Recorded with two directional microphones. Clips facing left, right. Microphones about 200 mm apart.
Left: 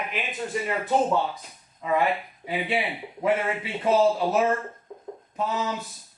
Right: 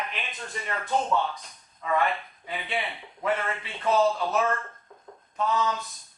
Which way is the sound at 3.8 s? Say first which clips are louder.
Left 3 dB; 25° left (ahead or behind).